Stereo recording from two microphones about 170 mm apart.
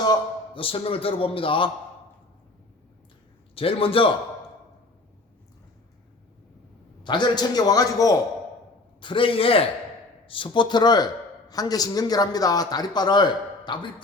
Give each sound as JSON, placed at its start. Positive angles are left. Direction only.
{"t": 0.0, "sound": "a man's voice", "side_deg": 30}
{"t": 3.5, "sound": "a man's voice", "side_deg": 35}
{"t": 7.0, "sound": "a man's voice", "side_deg": 25}